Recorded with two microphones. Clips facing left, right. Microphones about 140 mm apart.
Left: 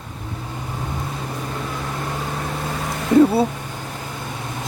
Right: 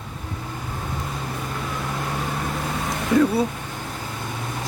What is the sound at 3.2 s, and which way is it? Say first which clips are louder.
Speech: left 6 dB; 30° left (ahead or behind).